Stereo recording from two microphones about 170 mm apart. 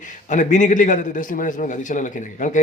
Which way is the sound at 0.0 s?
45° left (ahead or behind).